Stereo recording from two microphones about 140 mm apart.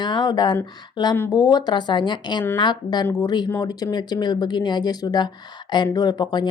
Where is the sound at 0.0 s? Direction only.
30° left (ahead or behind).